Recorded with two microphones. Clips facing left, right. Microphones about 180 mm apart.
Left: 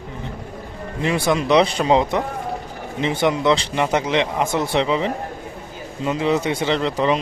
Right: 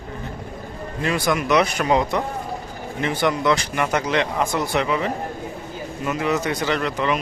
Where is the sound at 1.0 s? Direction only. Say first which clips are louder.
Left 2 dB; 25° left (ahead or behind).